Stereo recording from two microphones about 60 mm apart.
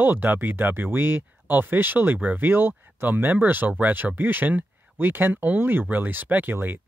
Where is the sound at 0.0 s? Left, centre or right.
Right.